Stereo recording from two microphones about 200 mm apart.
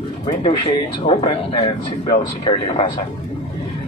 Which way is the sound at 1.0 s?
30° left (ahead or behind).